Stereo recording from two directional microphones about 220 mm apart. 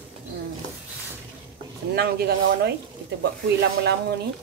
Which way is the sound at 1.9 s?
45° right (ahead or behind).